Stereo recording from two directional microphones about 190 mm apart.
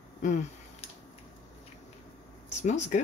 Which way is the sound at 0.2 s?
40° left (ahead or behind).